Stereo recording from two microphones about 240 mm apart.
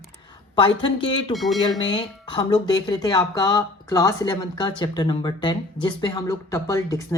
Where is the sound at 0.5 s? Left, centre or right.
Left.